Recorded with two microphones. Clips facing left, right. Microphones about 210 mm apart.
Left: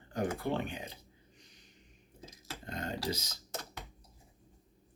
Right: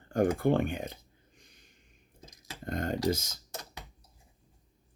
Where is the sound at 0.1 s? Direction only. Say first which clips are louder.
Right 8 dB; 50° right (ahead or behind).